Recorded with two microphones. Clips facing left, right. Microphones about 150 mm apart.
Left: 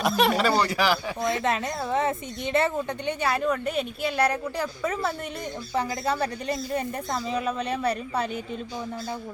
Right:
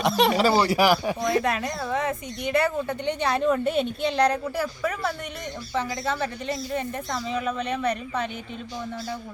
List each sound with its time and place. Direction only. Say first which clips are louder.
0.0 s a woman's voice: right 2 dB; centre (ahead or behind)
1.4 s speech: right 1 dB; 25° left (ahead or behind)
3.1 s a woman's voice: right 3 dB; 5° left (ahead or behind); by 5.1 s 20° left (ahead or behind)
5.7 s speech: left 1 dB; 40° left (ahead or behind)